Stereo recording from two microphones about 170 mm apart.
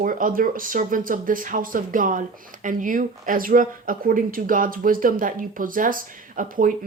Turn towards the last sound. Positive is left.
turn(degrees=-50)  # may be behind; listen again after turning